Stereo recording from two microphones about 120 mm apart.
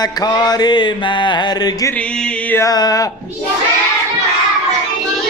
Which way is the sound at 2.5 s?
25° left (ahead or behind).